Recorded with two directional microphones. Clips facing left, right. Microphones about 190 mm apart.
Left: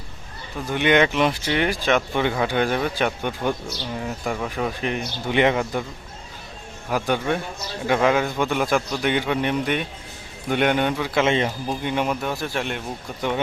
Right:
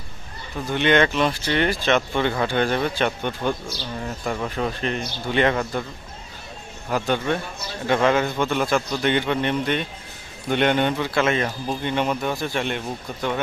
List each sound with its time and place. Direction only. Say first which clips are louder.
0.7 s speech: even; 10° left (ahead or behind)
6.9 s speech: even; 10° left (ahead or behind)
11.1 s speech: left 1 dB; 20° left (ahead or behind)
11.7 s speech: right 3 dB; 10° left (ahead or behind)